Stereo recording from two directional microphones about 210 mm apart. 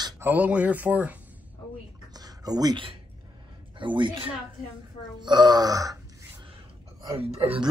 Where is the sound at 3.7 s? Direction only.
25° right (ahead or behind).